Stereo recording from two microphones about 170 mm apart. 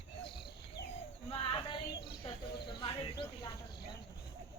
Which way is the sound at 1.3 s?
30° left (ahead or behind).